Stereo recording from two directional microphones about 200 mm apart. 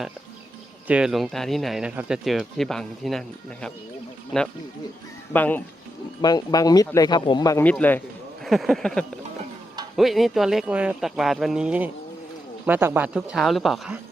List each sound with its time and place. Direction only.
0.9 s speech: 5° right (ahead or behind)
5.3 s speech: 10° left (ahead or behind)
6.2 s speech: 20° left (ahead or behind); by 13.9 s centre (ahead or behind)